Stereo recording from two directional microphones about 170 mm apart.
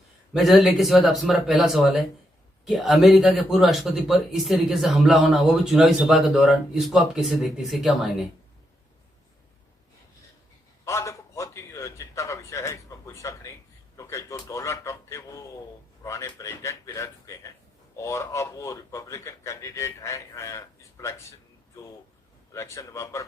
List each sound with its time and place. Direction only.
0.3 s speech: centre (ahead or behind)
10.8 s a sound: 15° left (ahead or behind)
16.0 s a man's voice: 15° left (ahead or behind)
22.5 s a man's voice: 15° left (ahead or behind)